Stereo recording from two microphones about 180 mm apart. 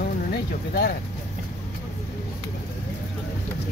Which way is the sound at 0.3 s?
55° left (ahead or behind).